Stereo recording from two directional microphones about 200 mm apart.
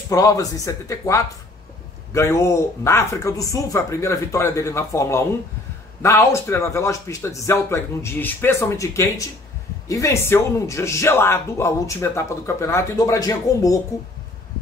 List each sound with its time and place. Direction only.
0.1 s a man's voice: 15° left (ahead or behind)